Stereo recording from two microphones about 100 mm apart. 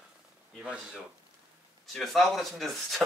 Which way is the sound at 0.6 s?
10° right (ahead or behind).